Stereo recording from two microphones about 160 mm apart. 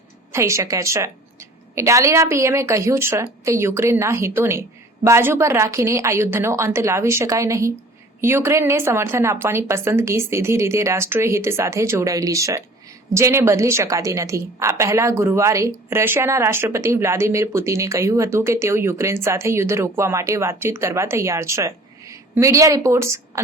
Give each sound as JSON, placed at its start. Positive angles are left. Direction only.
{"t": 0.3, "sound": "a woman's voice", "side_deg": -20}